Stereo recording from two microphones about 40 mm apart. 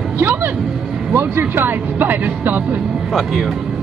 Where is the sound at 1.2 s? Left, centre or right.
Right.